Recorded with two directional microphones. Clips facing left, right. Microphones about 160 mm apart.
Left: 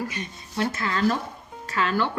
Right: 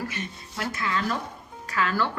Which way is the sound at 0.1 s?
20° left (ahead or behind).